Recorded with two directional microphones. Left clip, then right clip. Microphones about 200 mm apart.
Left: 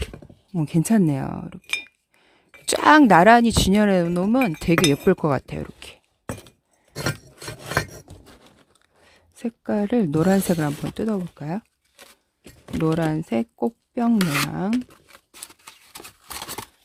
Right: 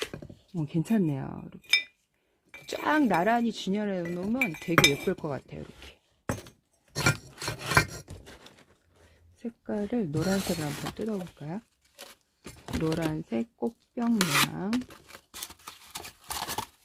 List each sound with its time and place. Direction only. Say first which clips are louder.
0.1 s a sound: left 1 dB; 15° left (ahead or behind)
0.5 s speech: left 8 dB; 40° left (ahead or behind)
4.5 s speech: left 3 dB; 5° left (ahead or behind)
5.0 s speech: left 12 dB; 50° left (ahead or behind)
7.0 s filing: right 1 dB; 15° right (ahead or behind)
8.0 s a sound: left 1 dB; 20° left (ahead or behind)
9.3 s speech: left 9 dB; 50° left (ahead or behind)
11.9 s a sound: even; 5° right (ahead or behind)
12.8 s speech: left 8 dB; 50° left (ahead or behind)
14.2 s speech: left 2 dB; centre (ahead or behind)
14.7 s a sound: left 6 dB; centre (ahead or behind)
16.2 s horse: even; centre (ahead or behind)